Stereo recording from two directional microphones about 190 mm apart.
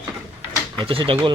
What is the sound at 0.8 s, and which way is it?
Speech, 25° right (ahead or behind).